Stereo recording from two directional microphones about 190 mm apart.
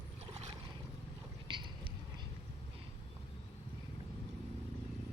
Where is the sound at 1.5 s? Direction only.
25° right (ahead or behind).